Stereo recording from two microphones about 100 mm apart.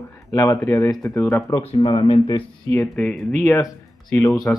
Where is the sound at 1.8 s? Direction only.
55° left (ahead or behind).